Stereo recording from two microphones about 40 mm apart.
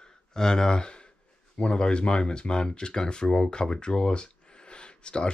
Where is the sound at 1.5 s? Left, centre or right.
Left.